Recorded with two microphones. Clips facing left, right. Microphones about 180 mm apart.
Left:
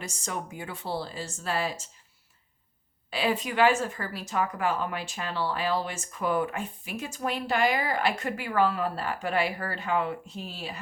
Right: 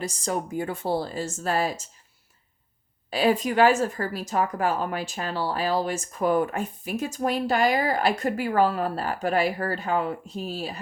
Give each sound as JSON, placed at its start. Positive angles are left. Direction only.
{"t": 0.0, "sound": "speech", "side_deg": -35}
{"t": 3.1, "sound": "speech", "side_deg": -40}